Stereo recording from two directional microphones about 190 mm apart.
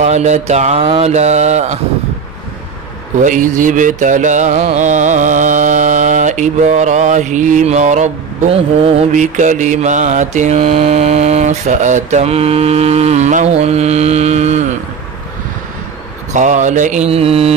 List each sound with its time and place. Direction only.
0.0 s music: 35° right (ahead or behind)
3.3 s music: 45° right (ahead or behind)
16.3 s music: 40° right (ahead or behind)